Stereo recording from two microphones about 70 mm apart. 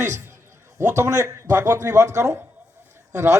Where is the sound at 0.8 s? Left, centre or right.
Right.